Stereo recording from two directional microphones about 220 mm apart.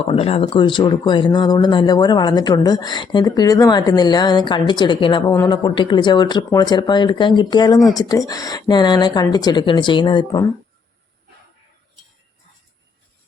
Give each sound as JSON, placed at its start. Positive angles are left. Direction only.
{"t": 0.1, "sound": "speech", "side_deg": 25}